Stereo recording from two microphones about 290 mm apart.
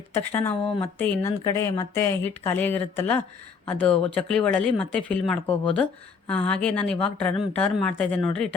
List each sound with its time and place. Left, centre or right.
0.1 s speech: centre